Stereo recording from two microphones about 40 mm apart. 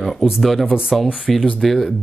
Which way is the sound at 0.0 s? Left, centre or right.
Centre.